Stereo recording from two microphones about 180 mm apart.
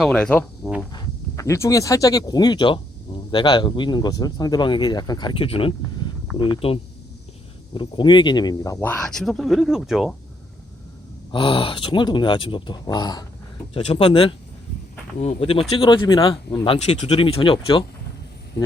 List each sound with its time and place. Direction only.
0.0 s speech: 5° left (ahead or behind)
11.3 s speech: 30° left (ahead or behind)
13.7 s speech: 30° left (ahead or behind)